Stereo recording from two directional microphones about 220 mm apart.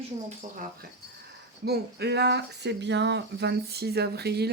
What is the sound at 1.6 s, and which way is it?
Speech, 45° right (ahead or behind).